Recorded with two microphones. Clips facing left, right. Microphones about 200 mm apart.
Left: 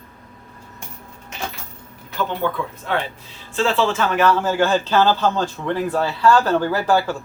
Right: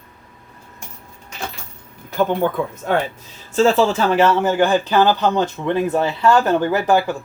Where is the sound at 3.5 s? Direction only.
40° right (ahead or behind).